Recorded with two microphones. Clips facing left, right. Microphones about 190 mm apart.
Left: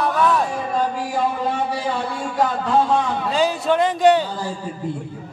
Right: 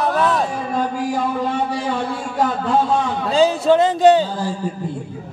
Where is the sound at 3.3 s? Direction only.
30° right (ahead or behind).